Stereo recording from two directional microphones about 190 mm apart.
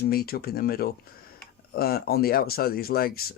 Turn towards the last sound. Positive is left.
turn(degrees=50)  # may be behind; listen again after turning